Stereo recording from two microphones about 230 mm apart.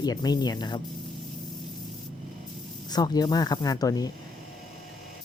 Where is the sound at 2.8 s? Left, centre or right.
Centre.